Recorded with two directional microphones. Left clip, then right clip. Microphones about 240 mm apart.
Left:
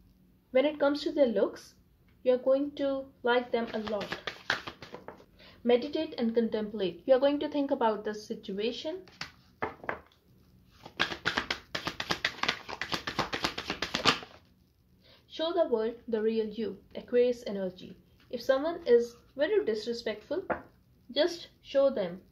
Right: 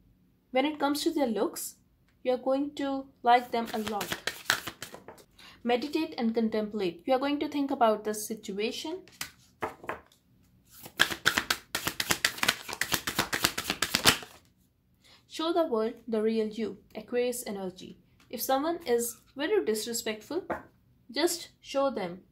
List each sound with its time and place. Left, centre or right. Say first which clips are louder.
0.5 s speech: left 2 dB; right
5.6 s speech: left 2 dB; right
10.8 s shuffling cards: right 5 dB; right
15.0 s a woman's voice: right 1 dB; right